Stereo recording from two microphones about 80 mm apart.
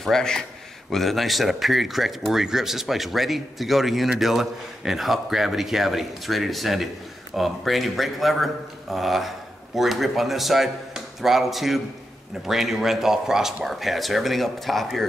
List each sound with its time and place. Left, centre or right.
0.0 s speech: centre